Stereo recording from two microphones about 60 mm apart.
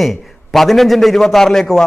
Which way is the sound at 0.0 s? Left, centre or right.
Centre.